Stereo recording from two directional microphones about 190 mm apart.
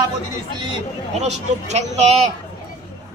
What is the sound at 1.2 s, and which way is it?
Speech, 35° right (ahead or behind).